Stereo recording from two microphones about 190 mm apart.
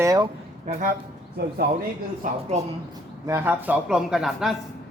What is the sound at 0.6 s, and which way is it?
Speech, 45° right (ahead or behind).